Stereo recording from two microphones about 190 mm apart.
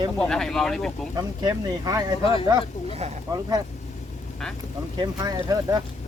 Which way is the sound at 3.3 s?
20° right (ahead or behind).